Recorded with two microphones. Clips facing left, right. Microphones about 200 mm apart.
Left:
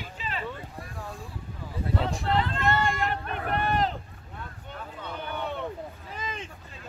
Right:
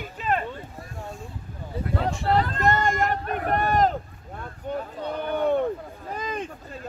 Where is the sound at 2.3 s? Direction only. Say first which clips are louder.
Right 4 dB; 40° right (ahead or behind).